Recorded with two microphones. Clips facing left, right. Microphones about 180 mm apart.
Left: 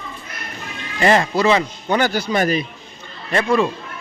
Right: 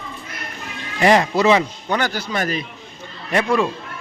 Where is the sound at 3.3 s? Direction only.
15° right (ahead or behind).